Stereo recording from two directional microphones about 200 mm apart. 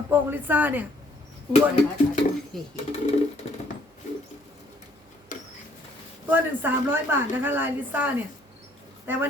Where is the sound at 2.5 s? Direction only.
Centre (ahead or behind).